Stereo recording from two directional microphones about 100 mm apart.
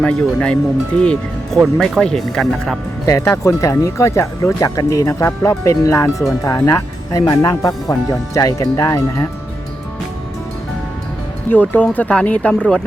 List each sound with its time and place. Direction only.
0.0 s speech: 10° left (ahead or behind)
3.1 s speech: 30° left (ahead or behind)
11.4 s speech: 20° left (ahead or behind)